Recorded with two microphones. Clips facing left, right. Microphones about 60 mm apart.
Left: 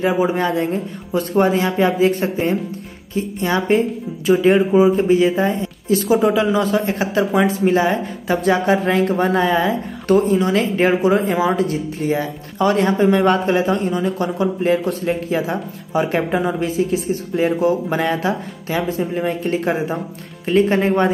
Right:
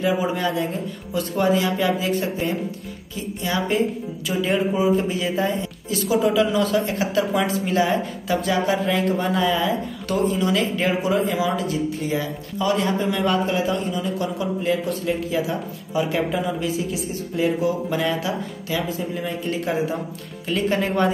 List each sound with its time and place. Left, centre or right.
0.0 s speech: left
6.0 s speech: left
6.5 s speech: left
13.2 s speech: left